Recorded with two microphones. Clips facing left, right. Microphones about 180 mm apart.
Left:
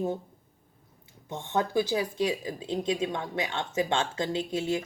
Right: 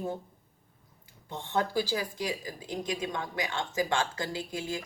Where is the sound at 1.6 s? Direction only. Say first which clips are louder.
Left 3 dB; 20° left (ahead or behind).